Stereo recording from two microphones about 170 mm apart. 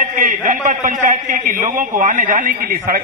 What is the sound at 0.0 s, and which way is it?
A man's voice, 50° right (ahead or behind).